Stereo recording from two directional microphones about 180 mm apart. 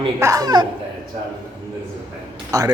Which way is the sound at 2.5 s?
20° right (ahead or behind).